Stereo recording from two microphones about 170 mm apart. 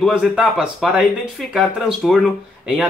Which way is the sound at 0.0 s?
Centre (ahead or behind).